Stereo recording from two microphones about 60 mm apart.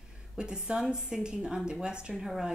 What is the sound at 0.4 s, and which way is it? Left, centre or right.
Speech, centre.